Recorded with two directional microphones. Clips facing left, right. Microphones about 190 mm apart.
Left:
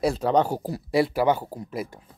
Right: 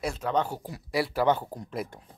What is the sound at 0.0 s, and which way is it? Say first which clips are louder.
Speech: left 7 dB; 35° left (ahead or behind).